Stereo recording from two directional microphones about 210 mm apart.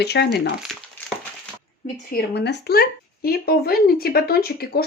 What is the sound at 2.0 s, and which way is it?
A woman's voice, 50° left (ahead or behind).